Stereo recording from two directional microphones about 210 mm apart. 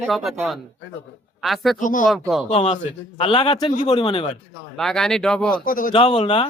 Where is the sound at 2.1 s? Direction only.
Centre (ahead or behind).